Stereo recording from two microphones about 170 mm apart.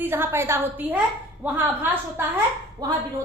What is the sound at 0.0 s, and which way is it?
A woman's voice, 15° right (ahead or behind).